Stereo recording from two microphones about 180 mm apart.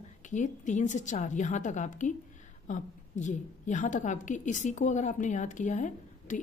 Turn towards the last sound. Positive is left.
turn(degrees=45)  # may be behind; listen again after turning